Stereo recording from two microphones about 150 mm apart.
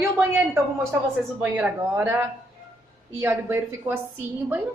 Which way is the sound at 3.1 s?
15° right (ahead or behind).